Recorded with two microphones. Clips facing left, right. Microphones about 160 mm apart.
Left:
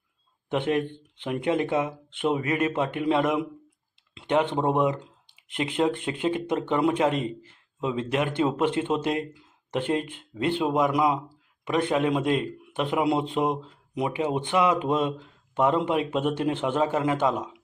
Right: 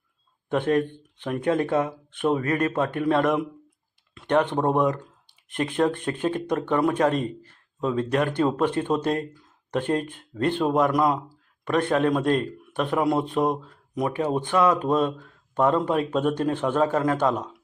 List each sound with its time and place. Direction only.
0.5 s speech: 15° left (ahead or behind)
4.1 s a sound: 15° left (ahead or behind)
4.5 s speech: 10° left (ahead or behind)
9.9 s speech: 45° right (ahead or behind)
10.3 s speech: 15° left (ahead or behind)